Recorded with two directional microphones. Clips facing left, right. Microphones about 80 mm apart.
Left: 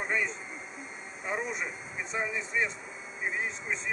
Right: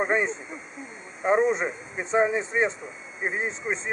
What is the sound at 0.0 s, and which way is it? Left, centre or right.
Speech, right.